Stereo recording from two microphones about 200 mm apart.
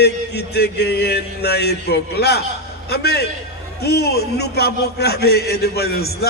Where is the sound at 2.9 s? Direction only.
55° left (ahead or behind).